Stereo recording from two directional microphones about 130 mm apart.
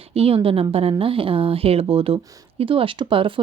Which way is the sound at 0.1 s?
50° right (ahead or behind).